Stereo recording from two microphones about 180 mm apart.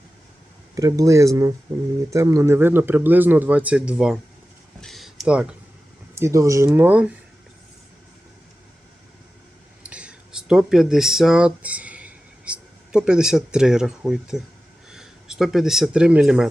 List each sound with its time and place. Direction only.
0.8 s a man's voice: 20° right (ahead or behind); by 4.2 s 5° right (ahead or behind)
4.8 s a sound: centre (ahead or behind)
6.1 s a man's voice: 15° right (ahead or behind)
9.8 s speech: 5° right (ahead or behind)